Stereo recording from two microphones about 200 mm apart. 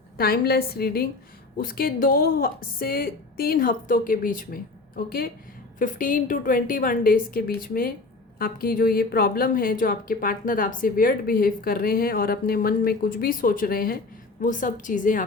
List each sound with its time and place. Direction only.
0.2 s a woman's voice: 50° left (ahead or behind)